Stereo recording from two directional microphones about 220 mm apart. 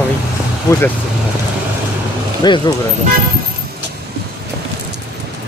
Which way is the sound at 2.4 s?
20° left (ahead or behind).